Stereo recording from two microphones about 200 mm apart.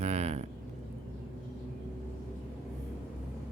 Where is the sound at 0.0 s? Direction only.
35° right (ahead or behind).